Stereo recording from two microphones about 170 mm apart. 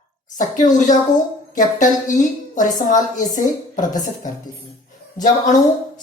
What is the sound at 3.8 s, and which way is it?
Speech, 25° left (ahead or behind).